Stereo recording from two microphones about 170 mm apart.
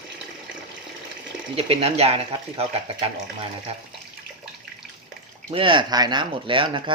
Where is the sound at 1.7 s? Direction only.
35° right (ahead or behind).